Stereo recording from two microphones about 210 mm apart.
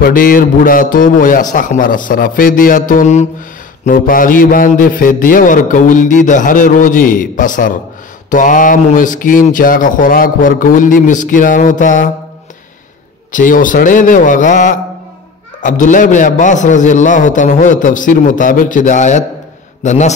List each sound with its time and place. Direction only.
0.0 s a man's voice: 40° left (ahead or behind)
13.3 s a man's voice: 40° left (ahead or behind)